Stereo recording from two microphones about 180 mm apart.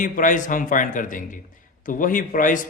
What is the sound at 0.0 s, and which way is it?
Speech, 45° left (ahead or behind).